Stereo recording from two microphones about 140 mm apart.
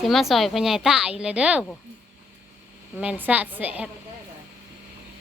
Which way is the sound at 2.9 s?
10° right (ahead or behind).